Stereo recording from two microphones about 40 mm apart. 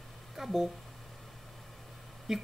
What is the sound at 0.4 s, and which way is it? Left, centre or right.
Speech, centre.